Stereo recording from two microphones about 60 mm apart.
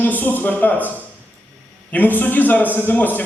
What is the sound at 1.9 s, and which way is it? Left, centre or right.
Speech, left.